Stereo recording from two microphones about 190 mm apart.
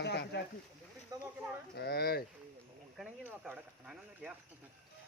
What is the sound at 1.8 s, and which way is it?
Speech, 60° left (ahead or behind).